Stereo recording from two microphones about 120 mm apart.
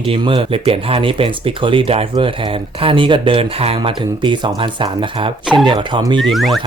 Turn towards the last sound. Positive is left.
turn(degrees=0)  # may be behind; listen again after turning